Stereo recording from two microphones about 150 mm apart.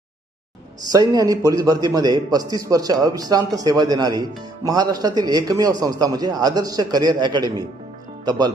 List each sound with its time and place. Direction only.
0.9 s speech: 25° right (ahead or behind)